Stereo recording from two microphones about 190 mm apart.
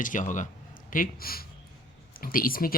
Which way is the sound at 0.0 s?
45° left (ahead or behind).